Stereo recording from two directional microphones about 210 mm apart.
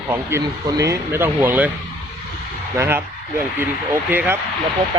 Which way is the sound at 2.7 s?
10° right (ahead or behind).